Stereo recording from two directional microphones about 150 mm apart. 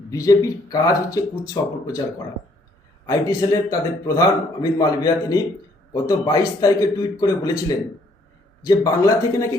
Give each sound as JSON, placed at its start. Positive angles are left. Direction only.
{"t": 0.1, "sound": "a man's voice", "side_deg": 20}
{"t": 3.1, "sound": "a man's voice", "side_deg": 25}